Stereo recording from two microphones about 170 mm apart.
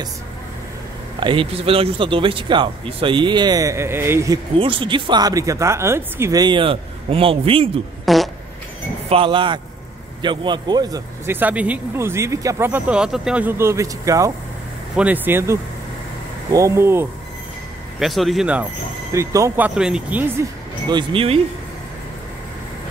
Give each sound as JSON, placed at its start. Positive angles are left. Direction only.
{"t": 1.2, "sound": "speech", "side_deg": -30}
{"t": 4.6, "sound": "speech", "side_deg": -30}
{"t": 8.0, "sound": "fart", "side_deg": 0}
{"t": 9.1, "sound": "speech", "side_deg": -30}
{"t": 11.3, "sound": "speech", "side_deg": -10}
{"t": 17.9, "sound": "speech", "side_deg": 0}
{"t": 19.1, "sound": "speech", "side_deg": -15}
{"t": 20.9, "sound": "speech", "side_deg": -35}